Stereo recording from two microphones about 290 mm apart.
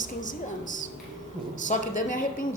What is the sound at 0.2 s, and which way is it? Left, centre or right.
A woman's voice, left.